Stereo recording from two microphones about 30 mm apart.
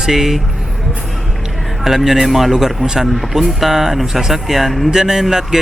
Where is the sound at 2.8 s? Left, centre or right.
Centre.